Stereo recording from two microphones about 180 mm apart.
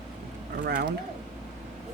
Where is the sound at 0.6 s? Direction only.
65° right (ahead or behind).